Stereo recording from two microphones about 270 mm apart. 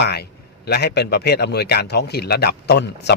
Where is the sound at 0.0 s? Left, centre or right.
Left.